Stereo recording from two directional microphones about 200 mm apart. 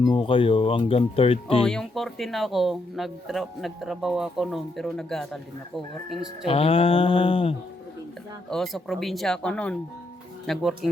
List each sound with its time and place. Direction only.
0.0 s speech: 25° left (ahead or behind)
1.6 s speech: 5° left (ahead or behind)
6.5 s speech: 30° left (ahead or behind)
8.4 s speech: centre (ahead or behind)